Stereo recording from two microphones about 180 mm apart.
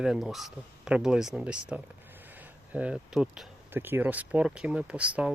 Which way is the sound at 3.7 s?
10° right (ahead or behind).